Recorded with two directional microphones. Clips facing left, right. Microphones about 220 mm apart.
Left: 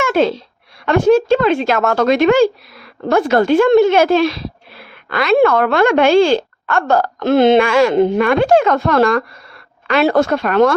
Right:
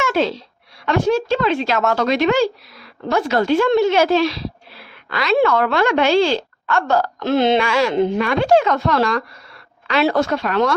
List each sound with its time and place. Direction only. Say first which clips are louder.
0.0 s a woman's voice: left 4 dB; 55° left (ahead or behind)